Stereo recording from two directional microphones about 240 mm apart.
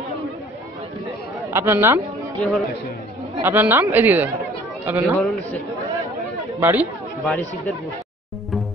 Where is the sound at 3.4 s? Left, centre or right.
Centre.